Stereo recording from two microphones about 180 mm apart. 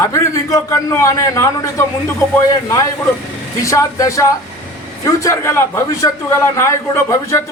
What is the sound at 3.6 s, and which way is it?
A man's voice, 15° left (ahead or behind).